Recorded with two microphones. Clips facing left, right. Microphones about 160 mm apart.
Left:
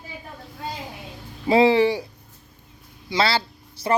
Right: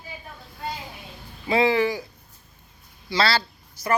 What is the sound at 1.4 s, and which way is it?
Speech, 30° left (ahead or behind).